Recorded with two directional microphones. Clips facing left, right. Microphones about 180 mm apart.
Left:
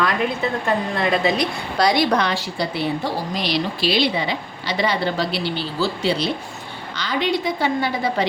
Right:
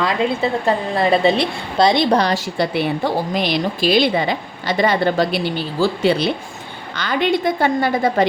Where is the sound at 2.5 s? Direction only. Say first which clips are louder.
Right 4 dB; 55° right (ahead or behind).